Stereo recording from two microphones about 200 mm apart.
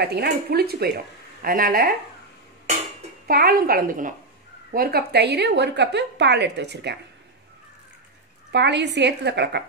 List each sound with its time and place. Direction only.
0.0 s speech: 50° right (ahead or behind)
3.3 s a woman's voice: 50° right (ahead or behind)
8.5 s a woman's voice: 60° right (ahead or behind)